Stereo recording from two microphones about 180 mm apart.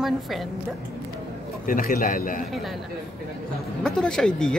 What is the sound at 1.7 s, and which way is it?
Speech, 50° left (ahead or behind).